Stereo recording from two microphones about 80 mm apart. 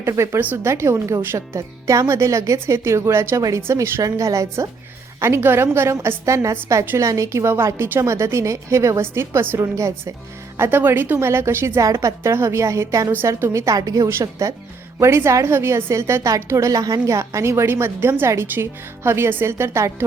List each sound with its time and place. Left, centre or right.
0.0 s a woman's voice: right
4.0 s a woman's voice: right
14.1 s a woman's voice: right